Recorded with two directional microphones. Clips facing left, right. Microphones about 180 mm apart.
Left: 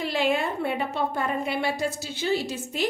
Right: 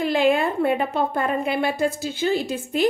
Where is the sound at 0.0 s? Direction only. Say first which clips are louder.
Right 6 dB; 55° right (ahead or behind).